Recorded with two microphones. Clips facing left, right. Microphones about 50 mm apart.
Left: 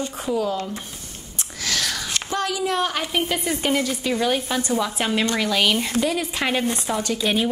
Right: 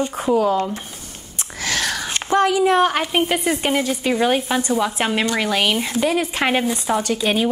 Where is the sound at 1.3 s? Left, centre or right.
Right.